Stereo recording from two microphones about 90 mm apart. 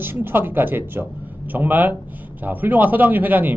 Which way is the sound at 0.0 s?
25° right (ahead or behind).